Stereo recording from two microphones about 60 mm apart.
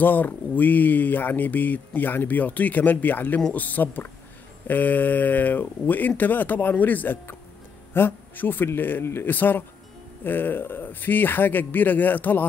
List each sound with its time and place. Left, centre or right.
0.0 s speech: left